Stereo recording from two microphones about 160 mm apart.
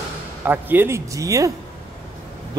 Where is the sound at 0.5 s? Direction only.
10° right (ahead or behind).